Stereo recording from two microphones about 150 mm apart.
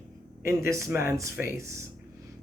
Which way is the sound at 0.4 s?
20° right (ahead or behind).